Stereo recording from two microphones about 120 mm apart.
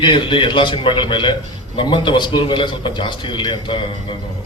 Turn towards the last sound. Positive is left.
turn(degrees=40)  # may be behind; listen again after turning